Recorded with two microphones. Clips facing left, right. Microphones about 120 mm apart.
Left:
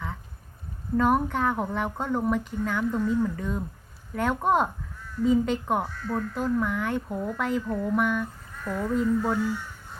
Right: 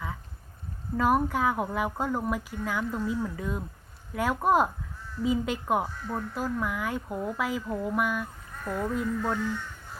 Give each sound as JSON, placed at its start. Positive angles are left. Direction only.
{"t": 0.9, "sound": "speech", "side_deg": -5}
{"t": 8.6, "sound": "speech", "side_deg": -35}
{"t": 8.9, "sound": "speech", "side_deg": 0}